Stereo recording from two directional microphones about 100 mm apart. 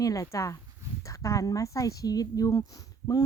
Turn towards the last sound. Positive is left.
turn(degrees=35)  # may be behind; listen again after turning